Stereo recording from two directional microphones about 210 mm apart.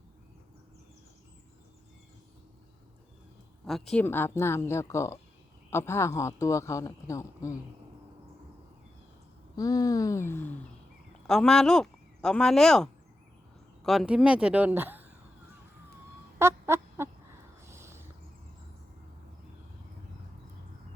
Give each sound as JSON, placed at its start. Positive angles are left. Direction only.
{"t": 3.7, "sound": "speech", "side_deg": 0}
{"t": 9.6, "sound": "speech", "side_deg": 15}
{"t": 16.4, "sound": "fowl", "side_deg": -10}
{"t": 17.7, "sound": "a sound", "side_deg": -10}